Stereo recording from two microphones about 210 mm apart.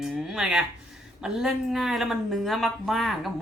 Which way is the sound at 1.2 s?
5° right (ahead or behind).